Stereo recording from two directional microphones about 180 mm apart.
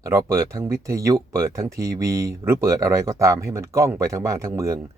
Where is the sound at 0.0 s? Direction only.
15° right (ahead or behind).